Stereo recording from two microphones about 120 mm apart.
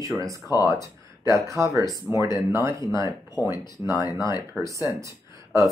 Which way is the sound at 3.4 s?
25° left (ahead or behind).